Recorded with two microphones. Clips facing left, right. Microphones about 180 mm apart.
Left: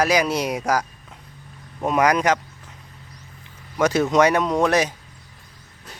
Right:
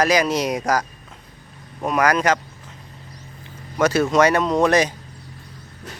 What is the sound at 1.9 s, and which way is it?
Speech, 20° left (ahead or behind).